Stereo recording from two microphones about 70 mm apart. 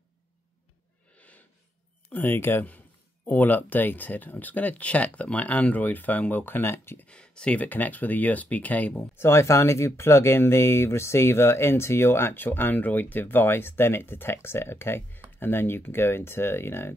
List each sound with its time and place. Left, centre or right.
1.1 s a sound: left
2.1 s speech: left
7.1 s speech: centre
9.1 s speech: left